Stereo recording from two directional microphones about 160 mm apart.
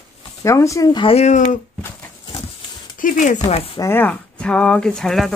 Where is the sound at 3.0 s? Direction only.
55° left (ahead or behind).